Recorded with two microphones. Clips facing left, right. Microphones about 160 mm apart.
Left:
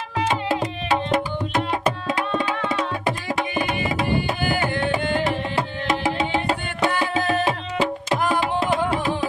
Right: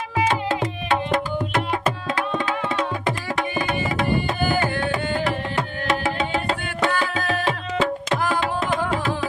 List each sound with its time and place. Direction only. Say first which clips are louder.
3.3 s music: even; 15° left (ahead or behind)